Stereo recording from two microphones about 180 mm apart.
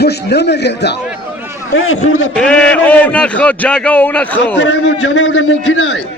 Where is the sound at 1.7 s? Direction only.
90° left.